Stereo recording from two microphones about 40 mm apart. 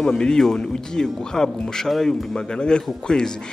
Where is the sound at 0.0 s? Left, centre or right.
Centre.